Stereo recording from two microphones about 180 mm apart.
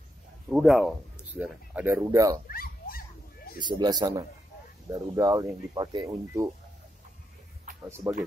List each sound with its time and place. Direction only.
0.5 s speech: centre (ahead or behind); by 2.4 s 20° right (ahead or behind)
2.5 s dog: 55° left (ahead or behind)
3.5 s speech: 25° right (ahead or behind)
8.0 s speech: 15° right (ahead or behind)